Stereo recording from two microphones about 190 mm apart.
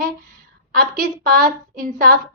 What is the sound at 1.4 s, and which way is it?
Speech, 45° right (ahead or behind).